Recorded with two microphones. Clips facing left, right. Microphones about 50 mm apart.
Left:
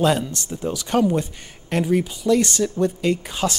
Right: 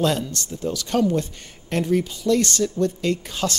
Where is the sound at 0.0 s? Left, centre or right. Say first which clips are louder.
Left 3 dB; centre.